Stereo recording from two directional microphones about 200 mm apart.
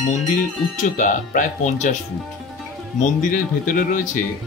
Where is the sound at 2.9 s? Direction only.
40° left (ahead or behind).